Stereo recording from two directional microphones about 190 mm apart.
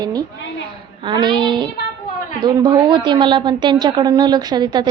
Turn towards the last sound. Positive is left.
turn(degrees=-20)  # may be behind; listen again after turning